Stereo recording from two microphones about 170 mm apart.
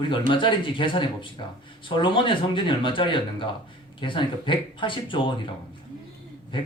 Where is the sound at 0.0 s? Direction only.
30° left (ahead or behind).